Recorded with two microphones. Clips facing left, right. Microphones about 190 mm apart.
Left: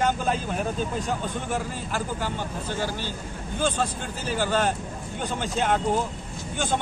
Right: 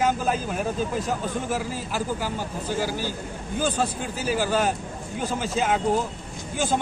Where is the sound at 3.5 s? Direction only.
10° right (ahead or behind).